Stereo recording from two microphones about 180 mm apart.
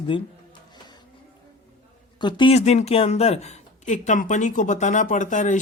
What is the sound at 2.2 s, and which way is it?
Speech, 30° left (ahead or behind).